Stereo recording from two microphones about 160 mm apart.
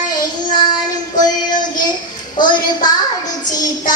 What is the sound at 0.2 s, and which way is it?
Child singing, 25° left (ahead or behind).